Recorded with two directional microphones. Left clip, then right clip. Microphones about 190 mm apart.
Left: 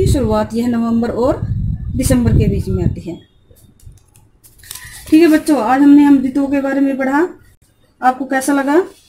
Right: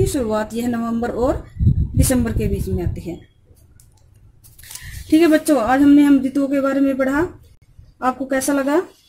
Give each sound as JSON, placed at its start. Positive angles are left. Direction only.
{"t": 0.0, "sound": "speech", "side_deg": -30}
{"t": 5.1, "sound": "speech", "side_deg": -30}